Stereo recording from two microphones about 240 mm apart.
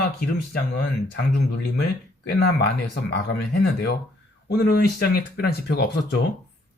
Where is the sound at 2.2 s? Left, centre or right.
Left.